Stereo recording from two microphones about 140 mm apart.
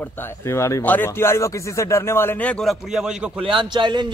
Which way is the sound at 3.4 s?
35° right (ahead or behind).